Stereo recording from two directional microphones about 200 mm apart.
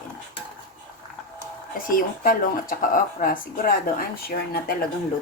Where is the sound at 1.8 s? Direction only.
45° left (ahead or behind).